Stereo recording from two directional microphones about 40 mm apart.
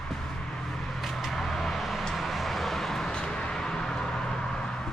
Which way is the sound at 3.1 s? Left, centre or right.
Left.